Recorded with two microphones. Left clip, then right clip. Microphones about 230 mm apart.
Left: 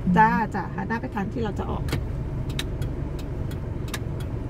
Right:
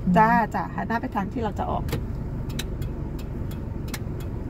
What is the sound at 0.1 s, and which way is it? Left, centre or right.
Speech, right.